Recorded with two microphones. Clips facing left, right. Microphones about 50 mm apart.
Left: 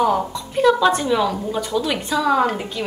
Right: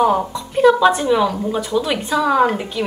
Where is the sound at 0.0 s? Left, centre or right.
Centre.